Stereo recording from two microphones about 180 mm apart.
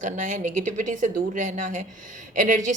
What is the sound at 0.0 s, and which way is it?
A woman's voice, 45° right (ahead or behind).